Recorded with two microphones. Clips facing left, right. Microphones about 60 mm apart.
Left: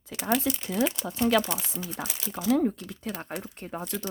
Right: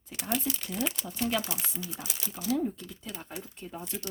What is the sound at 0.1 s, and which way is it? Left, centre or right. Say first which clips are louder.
Speech: left 6 dB; left.